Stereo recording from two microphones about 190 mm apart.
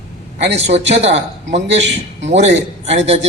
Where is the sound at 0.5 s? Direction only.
35° right (ahead or behind).